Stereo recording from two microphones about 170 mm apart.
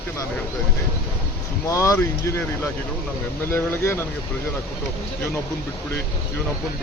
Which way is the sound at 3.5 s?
15° left (ahead or behind).